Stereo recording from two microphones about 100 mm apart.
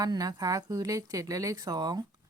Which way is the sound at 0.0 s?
40° right (ahead or behind).